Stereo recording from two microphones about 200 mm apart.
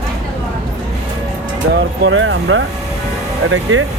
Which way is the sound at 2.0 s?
70° right (ahead or behind).